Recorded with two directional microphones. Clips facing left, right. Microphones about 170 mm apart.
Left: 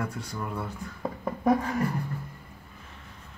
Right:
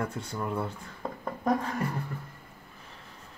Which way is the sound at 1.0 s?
10° left (ahead or behind).